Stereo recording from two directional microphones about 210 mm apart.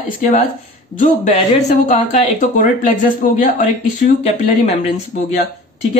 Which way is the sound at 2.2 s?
40° left (ahead or behind).